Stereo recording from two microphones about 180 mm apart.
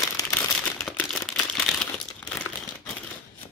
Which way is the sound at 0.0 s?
20° left (ahead or behind).